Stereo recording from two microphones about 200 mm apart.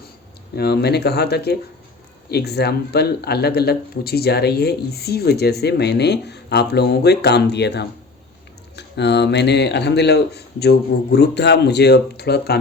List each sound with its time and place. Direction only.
0.5 s speech: 55° left (ahead or behind)